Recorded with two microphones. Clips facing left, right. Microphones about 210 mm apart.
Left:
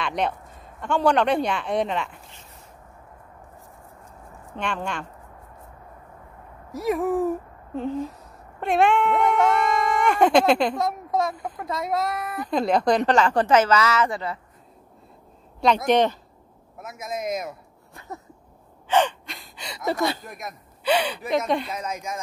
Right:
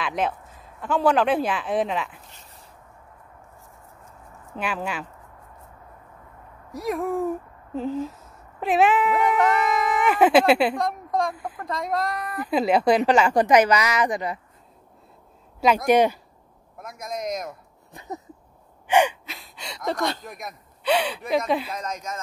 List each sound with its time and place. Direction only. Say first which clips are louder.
0.0 s speech: even; centre (ahead or behind)
4.6 s speech: even; 5° right (ahead or behind)
6.7 s speech: left 3 dB; centre (ahead or behind)
10.8 s a woman's voice: left 1 dB; 5° left (ahead or behind)
11.3 s a woman's voice: left 1 dB; 5° right (ahead or behind)
11.6 s speech: left 1 dB; 5° left (ahead or behind)
12.4 s a woman's voice: right 1 dB; 5° right (ahead or behind)
15.6 s a woman's voice: right 1 dB; 10° right (ahead or behind)
16.7 s speech: left 1 dB; 5° left (ahead or behind)
17.9 s a woman's voice: right 3 dB; 20° right (ahead or behind); by 22.2 s 10° left (ahead or behind)